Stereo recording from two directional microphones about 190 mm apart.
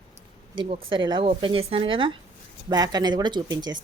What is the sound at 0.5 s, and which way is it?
A woman's voice, 25° right (ahead or behind).